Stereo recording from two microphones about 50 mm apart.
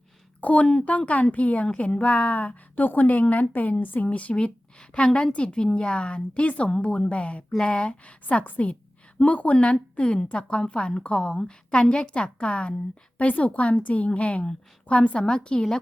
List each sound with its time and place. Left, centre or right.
0.4 s a woman's voice: left